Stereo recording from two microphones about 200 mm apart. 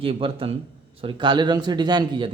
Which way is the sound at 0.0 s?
25° right (ahead or behind).